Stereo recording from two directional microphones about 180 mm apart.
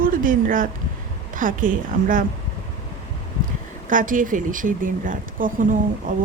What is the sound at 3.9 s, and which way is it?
Speech, 45° right (ahead or behind).